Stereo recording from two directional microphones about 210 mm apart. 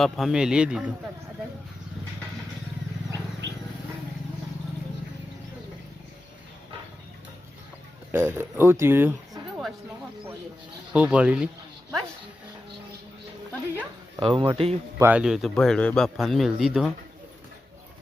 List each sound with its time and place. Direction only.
0.0 s a man's voice: centre (ahead or behind)
3.4 s a sound: 60° right (ahead or behind)
8.1 s speech: 10° right (ahead or behind)
10.9 s a man's voice: 5° right (ahead or behind)
14.2 s speech: 25° right (ahead or behind)
14.9 s a man's voice: 10° right (ahead or behind)